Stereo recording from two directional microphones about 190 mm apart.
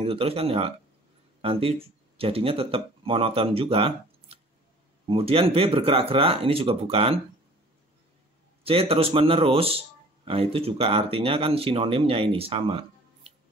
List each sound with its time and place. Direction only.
0.0 s speech: 30° right (ahead or behind)
8.6 s speech: 30° right (ahead or behind)